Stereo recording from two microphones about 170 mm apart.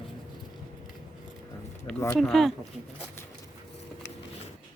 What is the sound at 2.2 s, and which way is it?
Speech, centre (ahead or behind).